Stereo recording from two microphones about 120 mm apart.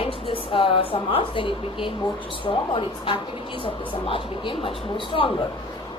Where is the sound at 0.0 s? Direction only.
50° left (ahead or behind).